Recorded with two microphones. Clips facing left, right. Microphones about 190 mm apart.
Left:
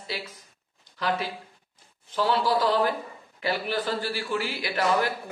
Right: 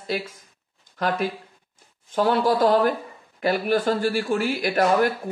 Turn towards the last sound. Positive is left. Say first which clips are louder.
# right 5 dB
turn(degrees=-45)  # may be behind; listen again after turning